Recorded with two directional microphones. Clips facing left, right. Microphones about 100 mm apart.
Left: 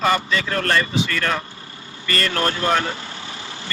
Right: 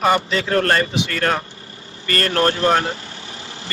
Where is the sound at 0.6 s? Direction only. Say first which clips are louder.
Right 3 dB; 40° right (ahead or behind).